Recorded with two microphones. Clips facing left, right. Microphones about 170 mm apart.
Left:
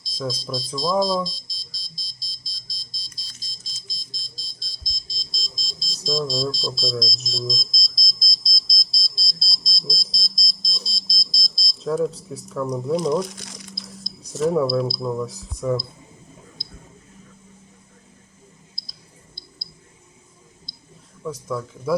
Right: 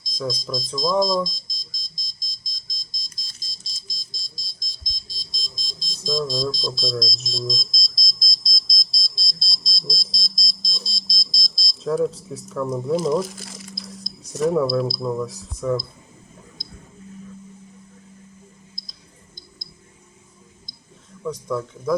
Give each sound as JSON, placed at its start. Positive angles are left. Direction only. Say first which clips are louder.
{"t": 0.0, "sound": "speech", "louder": "right 1 dB", "side_deg": -15}
{"t": 0.9, "sound": "smoke detector", "louder": "right 1 dB", "side_deg": -15}
{"t": 6.0, "sound": "smoke detector", "louder": "even", "side_deg": 5}
{"t": 21.2, "sound": "speech", "louder": "right 2 dB", "side_deg": 5}